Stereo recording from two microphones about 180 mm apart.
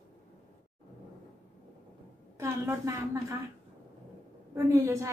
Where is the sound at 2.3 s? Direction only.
15° right (ahead or behind).